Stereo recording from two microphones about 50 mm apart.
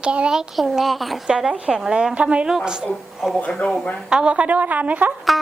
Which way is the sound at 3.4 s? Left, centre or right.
Left.